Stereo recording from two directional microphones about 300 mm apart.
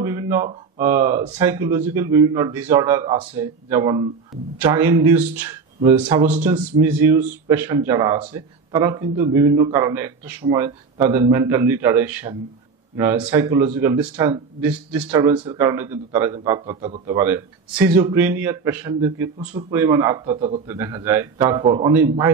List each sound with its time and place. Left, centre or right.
0.0 s a sound: centre
0.5 s a man's voice: centre
9.3 s a man's voice: centre